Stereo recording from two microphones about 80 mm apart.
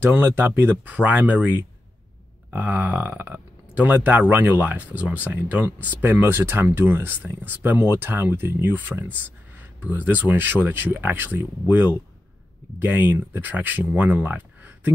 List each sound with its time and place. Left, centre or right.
0.0 s speech: right
12.7 s speech: right